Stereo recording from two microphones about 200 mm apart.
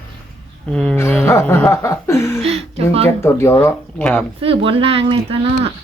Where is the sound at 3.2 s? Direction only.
15° left (ahead or behind).